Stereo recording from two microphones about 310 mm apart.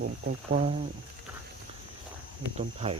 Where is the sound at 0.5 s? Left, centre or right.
Centre.